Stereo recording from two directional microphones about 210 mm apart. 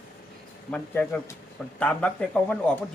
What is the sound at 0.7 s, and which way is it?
Speech, 5° left (ahead or behind).